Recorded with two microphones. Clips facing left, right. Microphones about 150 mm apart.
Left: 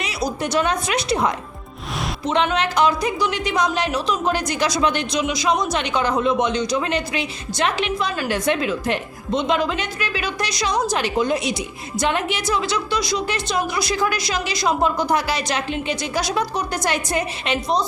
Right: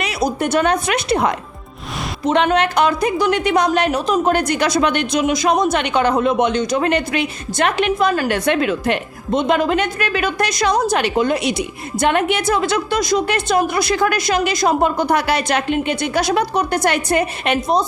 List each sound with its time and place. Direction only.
0.0 s a woman's voice: 55° right (ahead or behind)